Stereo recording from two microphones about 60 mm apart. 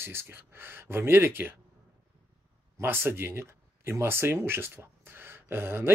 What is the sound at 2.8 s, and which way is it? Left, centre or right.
Speech, right.